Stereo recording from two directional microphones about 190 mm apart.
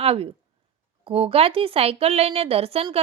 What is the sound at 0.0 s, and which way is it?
A woman's voice, 30° right (ahead or behind).